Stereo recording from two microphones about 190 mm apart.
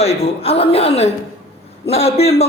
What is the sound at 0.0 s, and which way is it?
A man's voice, 35° left (ahead or behind).